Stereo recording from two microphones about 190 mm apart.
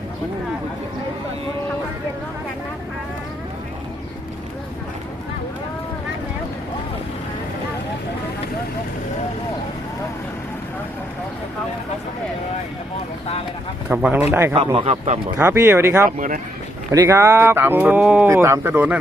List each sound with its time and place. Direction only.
13.9 s speech: 10° right (ahead or behind)
14.5 s speech: 25° right (ahead or behind)
15.4 s speech: 15° right (ahead or behind)
16.0 s speech: 45° right (ahead or behind)
16.9 s speech: 15° right (ahead or behind)